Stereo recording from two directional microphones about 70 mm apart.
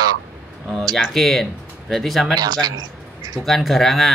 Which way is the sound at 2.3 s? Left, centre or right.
Right.